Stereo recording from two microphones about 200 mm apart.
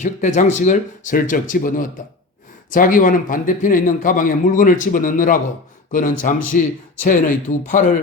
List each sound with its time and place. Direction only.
0.0 s a man's voice: 35° left (ahead or behind)